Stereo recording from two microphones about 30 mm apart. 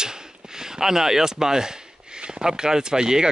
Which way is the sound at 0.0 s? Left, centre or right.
Right.